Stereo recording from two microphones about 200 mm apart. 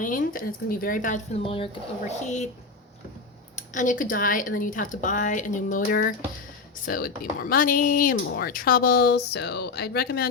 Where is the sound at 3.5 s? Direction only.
40° left (ahead or behind).